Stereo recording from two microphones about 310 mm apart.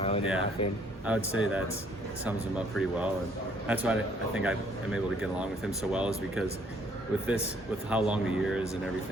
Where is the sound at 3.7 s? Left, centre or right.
Centre.